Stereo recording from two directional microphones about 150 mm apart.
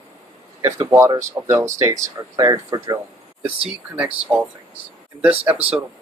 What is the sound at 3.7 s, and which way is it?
Speech, 10° right (ahead or behind).